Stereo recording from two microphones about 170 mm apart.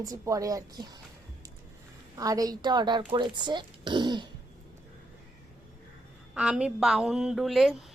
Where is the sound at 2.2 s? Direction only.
20° right (ahead or behind).